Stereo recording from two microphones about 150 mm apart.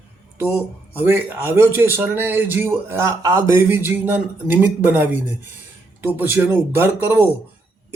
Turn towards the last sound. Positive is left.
turn(degrees=-15)  # may be behind; listen again after turning